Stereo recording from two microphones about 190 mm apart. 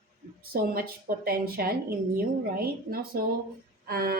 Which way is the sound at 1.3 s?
55° right (ahead or behind).